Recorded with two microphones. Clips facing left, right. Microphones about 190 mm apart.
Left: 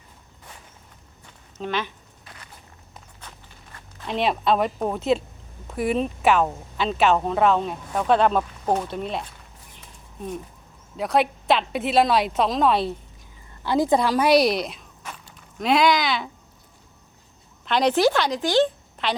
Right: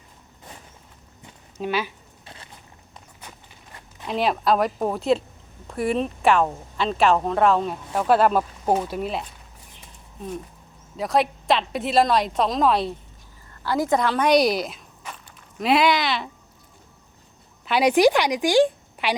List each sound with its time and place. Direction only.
1.5 s speech: 10° right (ahead or behind)
2.2 s a sound: 25° right (ahead or behind)
4.0 s speech: centre (ahead or behind)
13.7 s a woman's voice: 15° left (ahead or behind)
17.7 s a woman's voice: 10° right (ahead or behind)